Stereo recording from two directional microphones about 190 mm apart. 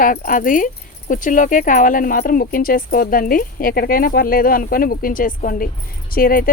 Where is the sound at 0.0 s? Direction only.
45° left (ahead or behind).